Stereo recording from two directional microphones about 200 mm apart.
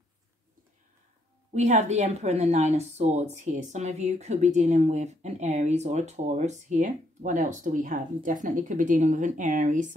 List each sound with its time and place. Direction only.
1.5 s speech: 35° right (ahead or behind)